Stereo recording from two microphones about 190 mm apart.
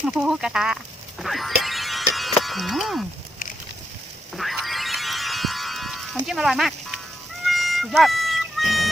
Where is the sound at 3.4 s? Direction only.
45° left (ahead or behind).